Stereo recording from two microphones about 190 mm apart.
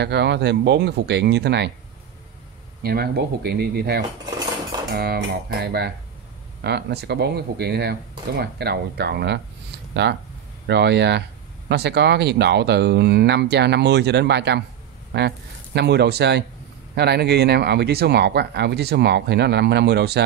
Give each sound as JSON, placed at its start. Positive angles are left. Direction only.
{"t": 0.0, "sound": "speech", "side_deg": -60}
{"t": 2.8, "sound": "speech", "side_deg": -55}